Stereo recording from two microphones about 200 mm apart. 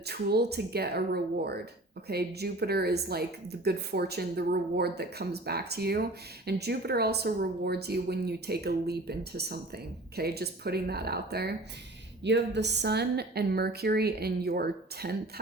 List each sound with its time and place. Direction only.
0.0 s a woman's voice: 55° right (ahead or behind)